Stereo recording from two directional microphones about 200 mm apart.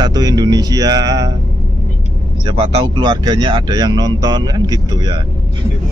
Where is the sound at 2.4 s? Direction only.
30° right (ahead or behind).